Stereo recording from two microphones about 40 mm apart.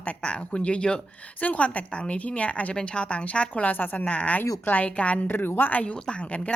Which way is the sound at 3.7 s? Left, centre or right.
Left.